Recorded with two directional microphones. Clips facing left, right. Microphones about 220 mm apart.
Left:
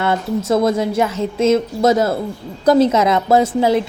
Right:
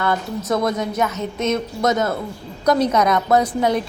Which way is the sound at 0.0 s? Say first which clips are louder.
Left 4 dB; 25° left (ahead or behind).